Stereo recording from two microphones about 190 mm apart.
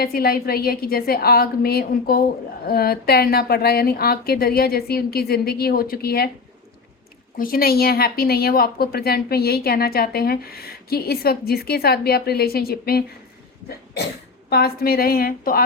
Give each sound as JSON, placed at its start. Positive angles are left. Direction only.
{"t": 0.0, "sound": "a woman's voice", "side_deg": 50}
{"t": 7.3, "sound": "a woman's voice", "side_deg": 50}
{"t": 13.7, "sound": "a sound", "side_deg": 60}
{"t": 14.5, "sound": "a woman's voice", "side_deg": 55}